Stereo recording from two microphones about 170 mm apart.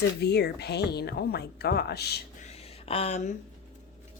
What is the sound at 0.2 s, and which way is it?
Speech, 75° left (ahead or behind).